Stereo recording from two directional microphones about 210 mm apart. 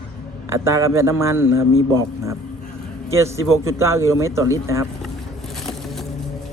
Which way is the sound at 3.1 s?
15° right (ahead or behind).